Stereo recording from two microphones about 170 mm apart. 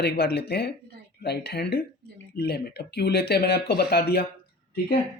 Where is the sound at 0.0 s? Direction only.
75° left (ahead or behind).